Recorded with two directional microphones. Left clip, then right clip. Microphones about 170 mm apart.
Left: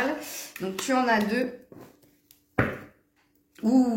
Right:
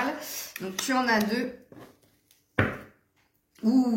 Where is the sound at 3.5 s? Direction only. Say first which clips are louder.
Left 2 dB; 50° left (ahead or behind).